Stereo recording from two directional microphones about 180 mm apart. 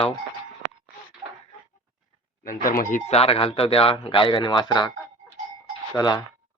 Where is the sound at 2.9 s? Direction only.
35° left (ahead or behind).